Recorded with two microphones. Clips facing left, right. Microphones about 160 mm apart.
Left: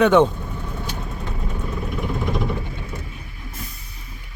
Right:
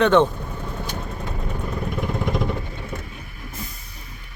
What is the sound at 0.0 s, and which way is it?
Speech, 10° left (ahead or behind).